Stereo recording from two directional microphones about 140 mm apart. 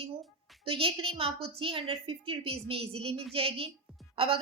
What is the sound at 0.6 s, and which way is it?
A woman's voice, 40° right (ahead or behind).